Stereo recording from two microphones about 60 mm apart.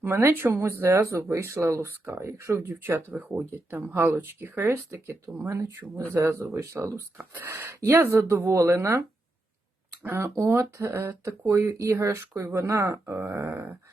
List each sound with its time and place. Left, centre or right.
0.0 s speech: right
2.6 s speech: right
3.1 s speech: right
6.9 s speech: right
7.4 s speech: right
8.5 s speech: right
10.0 s speech: right
10.2 s speech: right